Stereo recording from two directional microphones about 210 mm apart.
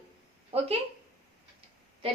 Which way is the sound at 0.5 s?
30° right (ahead or behind).